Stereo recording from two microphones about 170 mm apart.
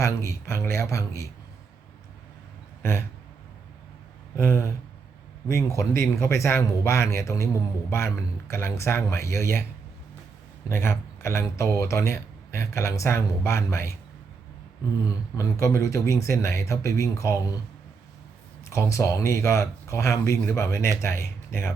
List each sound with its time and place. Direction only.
0.0 s speech: 15° left (ahead or behind)
4.4 s speech: 15° left (ahead or behind)
10.7 s speech: 15° left (ahead or behind)
15.0 s speech: 20° left (ahead or behind)
18.7 s speech: 15° left (ahead or behind)